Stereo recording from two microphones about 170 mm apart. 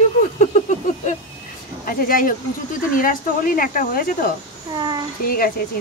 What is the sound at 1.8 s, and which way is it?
Speech, 60° left (ahead or behind).